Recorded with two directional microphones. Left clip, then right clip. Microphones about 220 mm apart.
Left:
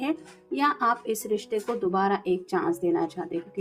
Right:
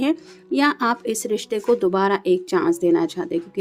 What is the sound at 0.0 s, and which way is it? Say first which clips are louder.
Speech: right 7 dB; 40° right (ahead or behind).